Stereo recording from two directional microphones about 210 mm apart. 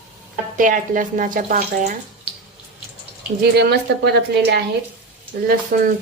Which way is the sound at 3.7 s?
50° right (ahead or behind).